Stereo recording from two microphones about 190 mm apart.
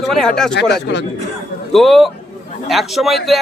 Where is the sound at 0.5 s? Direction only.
65° left (ahead or behind).